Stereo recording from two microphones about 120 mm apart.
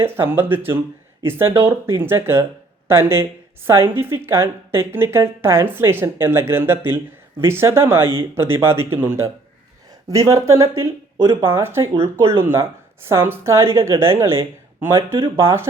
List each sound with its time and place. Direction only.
0.0 s a woman's voice: 20° right (ahead or behind)